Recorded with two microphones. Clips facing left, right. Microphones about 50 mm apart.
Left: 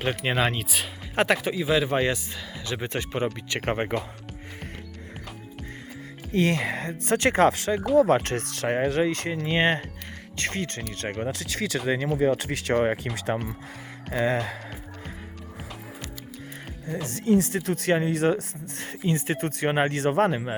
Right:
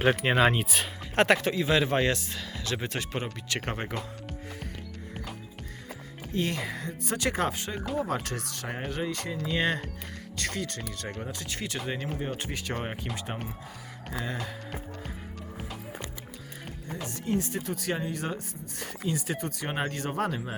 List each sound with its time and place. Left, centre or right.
0.0 s speech: centre; by 3.9 s left
6.3 s speech: left
7.5 s speech: left
8.1 s speech: left
8.5 s speech: left
11.2 s speech: left
14.1 s speech: left
17.1 s speech: left
18.6 s speech: left
19.6 s speech: left